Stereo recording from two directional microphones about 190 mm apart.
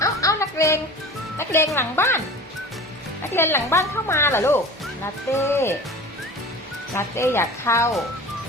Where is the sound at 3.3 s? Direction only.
15° left (ahead or behind).